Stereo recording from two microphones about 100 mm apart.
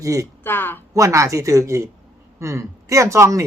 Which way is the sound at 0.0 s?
30° right (ahead or behind).